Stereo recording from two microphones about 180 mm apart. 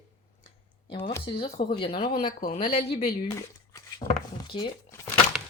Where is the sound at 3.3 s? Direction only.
15° left (ahead or behind).